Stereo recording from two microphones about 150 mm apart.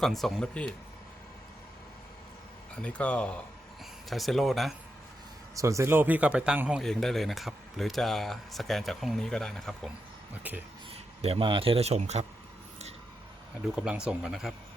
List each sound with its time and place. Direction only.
0.0 s speech: centre (ahead or behind)
2.7 s speech: 10° left (ahead or behind)
5.5 s speech: 20° right (ahead or behind); by 9.9 s 5° left (ahead or behind)
11.2 s speech: 40° right (ahead or behind)
13.7 s speech: 5° right (ahead or behind)